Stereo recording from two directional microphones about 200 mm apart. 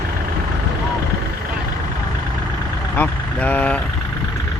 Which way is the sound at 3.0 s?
10° left (ahead or behind).